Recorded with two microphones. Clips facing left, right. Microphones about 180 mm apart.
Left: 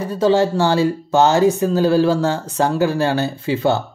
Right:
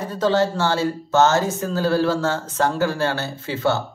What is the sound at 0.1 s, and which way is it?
Speech, 10° left (ahead or behind).